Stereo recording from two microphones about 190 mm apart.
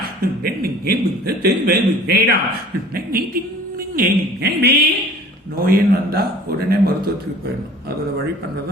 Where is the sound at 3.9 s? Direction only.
55° right (ahead or behind).